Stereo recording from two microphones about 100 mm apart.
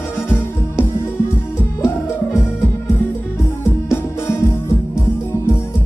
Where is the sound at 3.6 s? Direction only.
25° left (ahead or behind).